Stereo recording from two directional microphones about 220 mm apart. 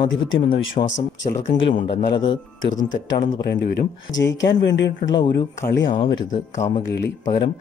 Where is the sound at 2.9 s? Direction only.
45° left (ahead or behind).